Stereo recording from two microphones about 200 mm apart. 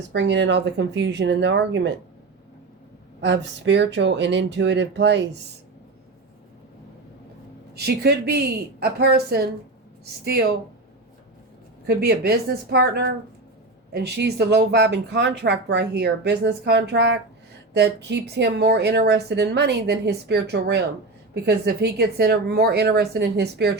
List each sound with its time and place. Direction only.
0.1 s speech: 60° right (ahead or behind)
3.2 s speech: 60° right (ahead or behind)
7.8 s a woman's voice: 50° right (ahead or behind)
11.9 s a woman's voice: 55° right (ahead or behind)